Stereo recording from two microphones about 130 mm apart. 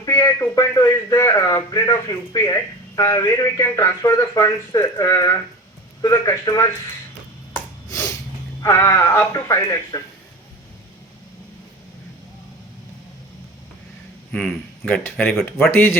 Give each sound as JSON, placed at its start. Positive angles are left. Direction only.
{"t": 0.0, "sound": "speech", "side_deg": 25}
{"t": 8.6, "sound": "speech", "side_deg": 25}
{"t": 14.3, "sound": "a man's voice", "side_deg": 10}
{"t": 15.7, "sound": "speech", "side_deg": 20}